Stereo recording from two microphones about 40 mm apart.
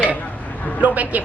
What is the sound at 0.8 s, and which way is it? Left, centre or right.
Speech, right.